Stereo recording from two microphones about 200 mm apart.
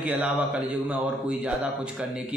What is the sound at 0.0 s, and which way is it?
A man's voice, 5° right (ahead or behind).